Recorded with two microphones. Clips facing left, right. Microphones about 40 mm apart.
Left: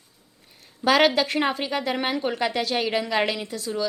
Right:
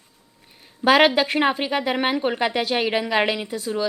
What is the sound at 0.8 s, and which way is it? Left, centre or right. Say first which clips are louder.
A woman's voice: right 3 dB; right.